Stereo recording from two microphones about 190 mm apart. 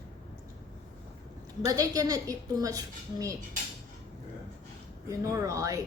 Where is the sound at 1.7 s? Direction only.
20° right (ahead or behind).